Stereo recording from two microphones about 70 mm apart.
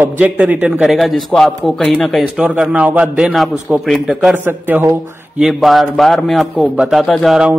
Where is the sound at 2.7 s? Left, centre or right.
Centre.